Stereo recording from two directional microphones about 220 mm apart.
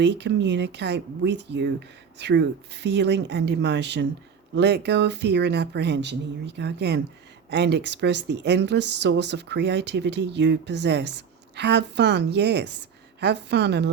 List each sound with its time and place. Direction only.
0.0 s speech: 50° right (ahead or behind)